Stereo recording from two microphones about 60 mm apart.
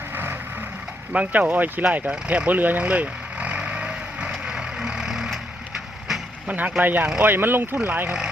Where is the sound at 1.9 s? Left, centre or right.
Right.